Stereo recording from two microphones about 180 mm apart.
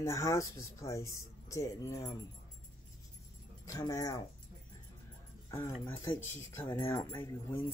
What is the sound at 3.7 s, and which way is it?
Speech, 20° left (ahead or behind).